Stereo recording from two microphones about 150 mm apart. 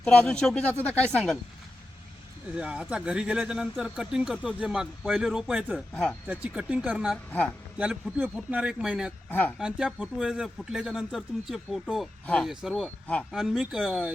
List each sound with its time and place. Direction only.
0.0 s speech: 5° left (ahead or behind)
2.6 s speech: 5° right (ahead or behind)
5.9 s speech: 5° left (ahead or behind)
6.2 s speech: 10° right (ahead or behind)
7.3 s speech: 10° left (ahead or behind)
7.8 s speech: 5° right (ahead or behind)